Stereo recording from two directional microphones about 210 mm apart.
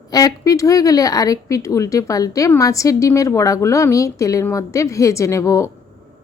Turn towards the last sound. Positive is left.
turn(degrees=15)  # may be behind; listen again after turning